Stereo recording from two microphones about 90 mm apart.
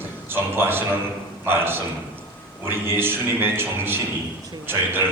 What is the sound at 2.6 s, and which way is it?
A man's voice, 25° right (ahead or behind).